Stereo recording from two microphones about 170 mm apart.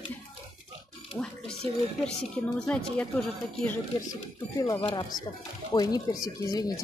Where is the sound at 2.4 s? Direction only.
5° left (ahead or behind).